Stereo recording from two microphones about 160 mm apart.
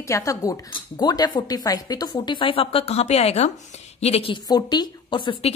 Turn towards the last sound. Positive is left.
turn(degrees=30)  # may be behind; listen again after turning